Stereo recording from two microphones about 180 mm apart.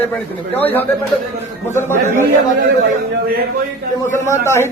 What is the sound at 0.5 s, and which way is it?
Speech, 10° left (ahead or behind).